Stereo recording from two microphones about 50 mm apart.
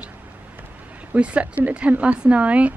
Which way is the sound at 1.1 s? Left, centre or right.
Right.